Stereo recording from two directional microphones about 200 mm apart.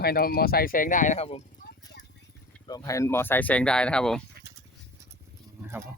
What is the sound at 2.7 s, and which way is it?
Speech, 15° left (ahead or behind).